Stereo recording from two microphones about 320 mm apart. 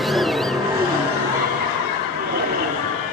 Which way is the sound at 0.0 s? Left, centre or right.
Centre.